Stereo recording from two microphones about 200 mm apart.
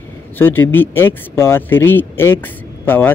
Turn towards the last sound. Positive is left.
turn(degrees=10)  # may be behind; listen again after turning